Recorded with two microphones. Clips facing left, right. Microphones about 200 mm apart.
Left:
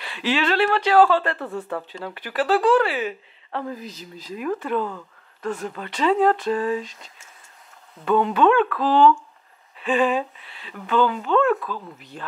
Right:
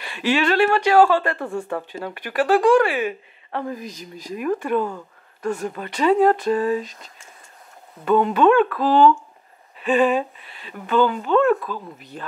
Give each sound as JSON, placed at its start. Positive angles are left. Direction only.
{"t": 0.0, "sound": "speech", "side_deg": -10}
{"t": 6.4, "sound": "a sound", "side_deg": -5}
{"t": 6.8, "sound": "speech", "side_deg": -45}
{"t": 8.0, "sound": "speech", "side_deg": -5}
{"t": 10.4, "sound": "speech", "side_deg": -45}
{"t": 11.1, "sound": "speech", "side_deg": -10}